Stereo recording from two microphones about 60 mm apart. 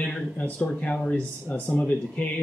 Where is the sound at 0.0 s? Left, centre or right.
Left.